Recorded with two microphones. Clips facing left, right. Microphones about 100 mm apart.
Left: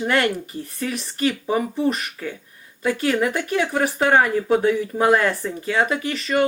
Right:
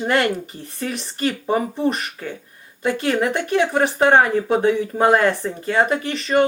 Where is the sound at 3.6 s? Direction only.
25° right (ahead or behind).